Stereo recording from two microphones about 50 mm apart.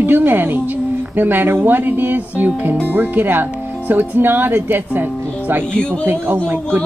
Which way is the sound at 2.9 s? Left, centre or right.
Right.